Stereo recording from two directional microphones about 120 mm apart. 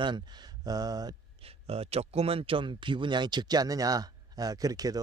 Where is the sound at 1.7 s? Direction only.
55° right (ahead or behind); by 5.0 s 30° right (ahead or behind).